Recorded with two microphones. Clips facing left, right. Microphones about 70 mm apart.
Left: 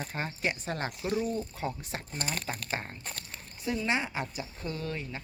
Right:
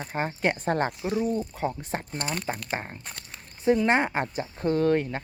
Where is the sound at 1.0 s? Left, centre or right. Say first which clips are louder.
Right 4 dB; centre.